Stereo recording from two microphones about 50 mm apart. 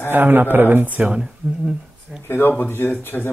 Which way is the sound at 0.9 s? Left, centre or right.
Right.